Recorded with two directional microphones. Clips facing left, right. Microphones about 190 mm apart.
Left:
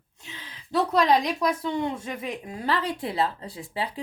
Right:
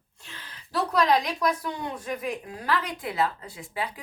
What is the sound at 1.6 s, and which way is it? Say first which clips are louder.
A woman's voice: left 5 dB; 25° left (ahead or behind).